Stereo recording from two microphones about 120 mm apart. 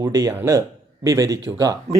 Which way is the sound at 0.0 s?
25° right (ahead or behind).